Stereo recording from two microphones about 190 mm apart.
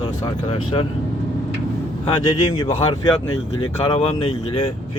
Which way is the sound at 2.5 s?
25° left (ahead or behind).